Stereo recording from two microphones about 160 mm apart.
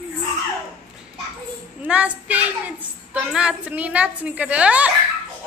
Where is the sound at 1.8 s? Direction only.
10° right (ahead or behind).